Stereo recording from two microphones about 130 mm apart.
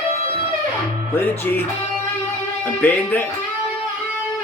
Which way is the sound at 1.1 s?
15° left (ahead or behind).